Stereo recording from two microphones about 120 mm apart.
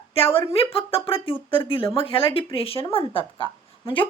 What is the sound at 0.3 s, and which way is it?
A woman's voice, 50° left (ahead or behind).